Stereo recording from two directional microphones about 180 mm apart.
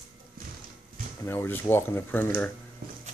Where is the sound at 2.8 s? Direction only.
55° right (ahead or behind).